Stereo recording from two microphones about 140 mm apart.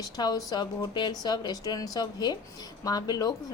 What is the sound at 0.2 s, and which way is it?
A woman's voice, 30° left (ahead or behind).